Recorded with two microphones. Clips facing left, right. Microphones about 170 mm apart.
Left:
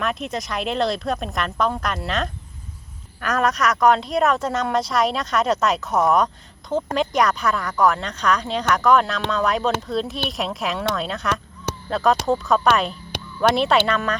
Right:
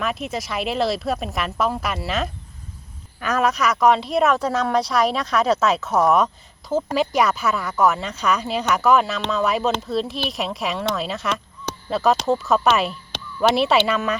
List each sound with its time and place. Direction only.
0.0 s speech: centre (ahead or behind)